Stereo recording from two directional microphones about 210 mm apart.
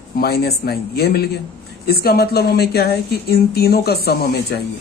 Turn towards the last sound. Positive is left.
turn(degrees=50)  # may be behind; listen again after turning